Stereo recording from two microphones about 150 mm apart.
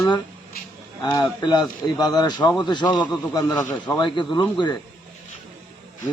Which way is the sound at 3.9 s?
30° left (ahead or behind).